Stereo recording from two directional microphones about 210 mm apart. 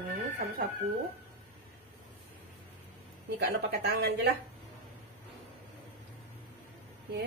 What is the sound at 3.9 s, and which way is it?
Speech, 50° right (ahead or behind).